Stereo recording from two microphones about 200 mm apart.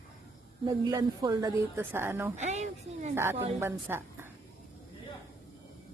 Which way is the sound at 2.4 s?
35° right (ahead or behind).